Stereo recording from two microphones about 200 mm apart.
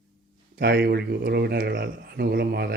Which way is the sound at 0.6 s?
55° right (ahead or behind).